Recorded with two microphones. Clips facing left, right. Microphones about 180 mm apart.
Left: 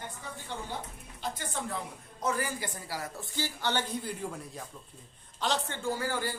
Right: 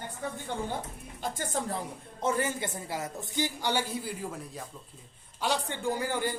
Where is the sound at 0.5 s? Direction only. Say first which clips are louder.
Right 2 dB; 50° right (ahead or behind).